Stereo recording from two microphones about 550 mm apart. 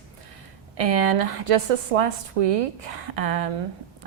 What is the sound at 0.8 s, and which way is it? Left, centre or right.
A woman's voice, right.